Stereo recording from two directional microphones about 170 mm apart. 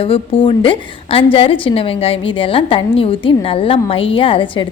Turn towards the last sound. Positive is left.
turn(degrees=30)  # may be behind; listen again after turning